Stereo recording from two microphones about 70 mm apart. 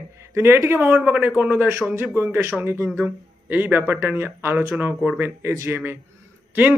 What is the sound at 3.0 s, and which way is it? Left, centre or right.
A man's voice, right.